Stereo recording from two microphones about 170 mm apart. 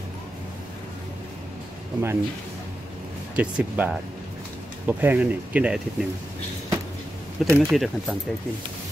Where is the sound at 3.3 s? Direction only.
10° right (ahead or behind).